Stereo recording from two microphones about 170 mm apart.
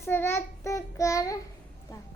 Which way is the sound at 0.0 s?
15° left (ahead or behind).